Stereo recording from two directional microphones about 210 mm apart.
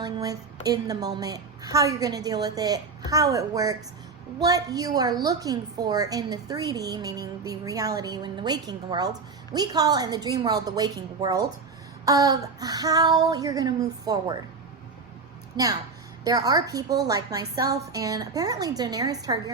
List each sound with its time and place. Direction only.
0.0 s a woman's voice: 15° right (ahead or behind)
15.5 s a woman's voice: 15° right (ahead or behind)